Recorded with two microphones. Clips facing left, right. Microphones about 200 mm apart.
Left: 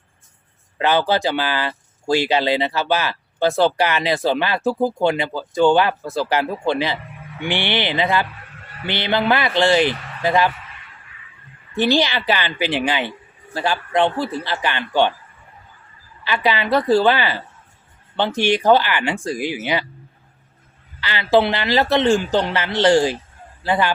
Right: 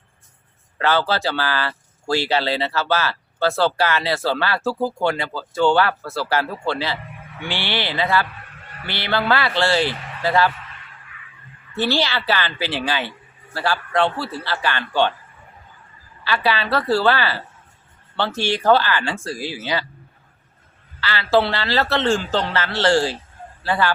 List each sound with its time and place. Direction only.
0.8 s speech: 15° left (ahead or behind)
11.7 s speech: 15° left (ahead or behind)
16.2 s speech: 15° left (ahead or behind)
21.0 s speech: 15° left (ahead or behind)